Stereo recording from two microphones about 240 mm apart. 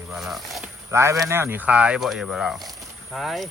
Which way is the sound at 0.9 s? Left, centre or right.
Centre.